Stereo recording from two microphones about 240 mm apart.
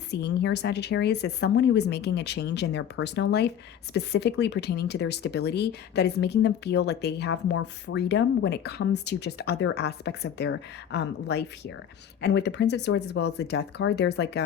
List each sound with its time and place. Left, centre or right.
0.1 s speech: left